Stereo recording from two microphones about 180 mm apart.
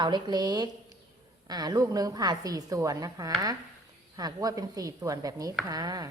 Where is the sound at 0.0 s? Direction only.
25° right (ahead or behind).